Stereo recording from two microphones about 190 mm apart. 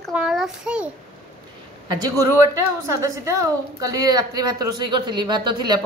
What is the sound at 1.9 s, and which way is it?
A woman's voice, 20° right (ahead or behind).